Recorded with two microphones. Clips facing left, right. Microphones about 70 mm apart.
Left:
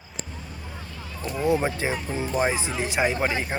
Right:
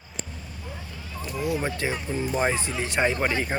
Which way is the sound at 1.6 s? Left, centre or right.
Centre.